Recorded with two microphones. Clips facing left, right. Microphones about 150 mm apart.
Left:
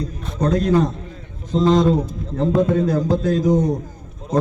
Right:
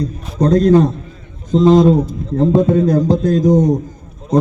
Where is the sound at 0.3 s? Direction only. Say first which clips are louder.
Right 7 dB; 35° right (ahead or behind).